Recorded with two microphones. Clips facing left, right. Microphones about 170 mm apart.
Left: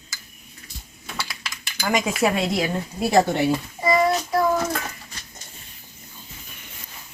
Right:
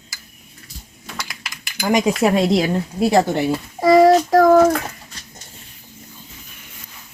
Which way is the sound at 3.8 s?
90° right.